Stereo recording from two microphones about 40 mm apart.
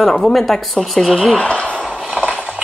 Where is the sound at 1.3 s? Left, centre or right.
Left.